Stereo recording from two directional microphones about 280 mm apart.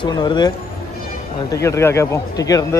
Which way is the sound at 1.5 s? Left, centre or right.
Centre.